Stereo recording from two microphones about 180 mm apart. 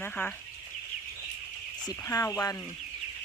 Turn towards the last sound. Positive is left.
turn(degrees=15)  # may be behind; listen again after turning